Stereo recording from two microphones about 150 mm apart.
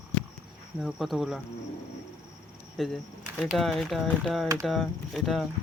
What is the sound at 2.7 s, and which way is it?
Speech, centre (ahead or behind).